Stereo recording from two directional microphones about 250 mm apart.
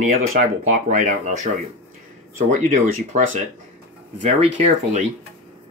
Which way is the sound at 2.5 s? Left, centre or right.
Right.